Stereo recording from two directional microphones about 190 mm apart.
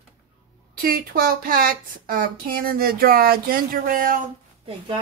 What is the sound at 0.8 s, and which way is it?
Speech, 50° right (ahead or behind).